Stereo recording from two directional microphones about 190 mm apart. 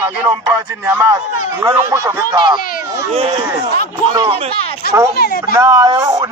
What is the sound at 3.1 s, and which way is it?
A man's voice, 35° right (ahead or behind).